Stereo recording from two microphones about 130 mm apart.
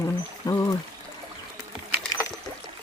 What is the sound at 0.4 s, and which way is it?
Pour, 25° left (ahead or behind).